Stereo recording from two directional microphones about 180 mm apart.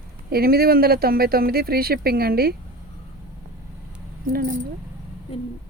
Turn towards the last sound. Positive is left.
turn(degrees=-50)  # may be behind; listen again after turning